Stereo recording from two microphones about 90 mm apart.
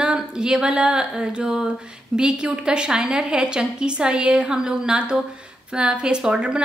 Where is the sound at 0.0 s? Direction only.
10° right (ahead or behind).